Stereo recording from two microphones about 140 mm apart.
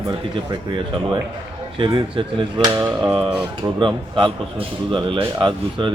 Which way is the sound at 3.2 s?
30° right (ahead or behind).